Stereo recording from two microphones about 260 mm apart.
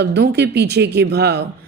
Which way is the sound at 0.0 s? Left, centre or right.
Right.